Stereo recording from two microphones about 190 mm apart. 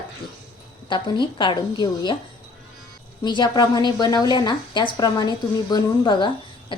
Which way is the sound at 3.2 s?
25° left (ahead or behind).